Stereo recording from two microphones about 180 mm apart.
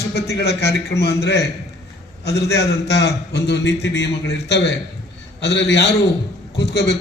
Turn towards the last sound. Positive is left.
turn(degrees=70)  # may be behind; listen again after turning